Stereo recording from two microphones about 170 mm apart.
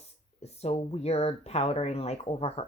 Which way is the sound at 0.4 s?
40° left (ahead or behind).